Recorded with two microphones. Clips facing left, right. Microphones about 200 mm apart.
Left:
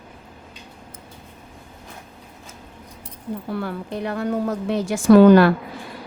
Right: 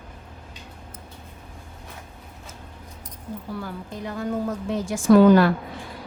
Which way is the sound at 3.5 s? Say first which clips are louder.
Left 6 dB; 65° left (ahead or behind).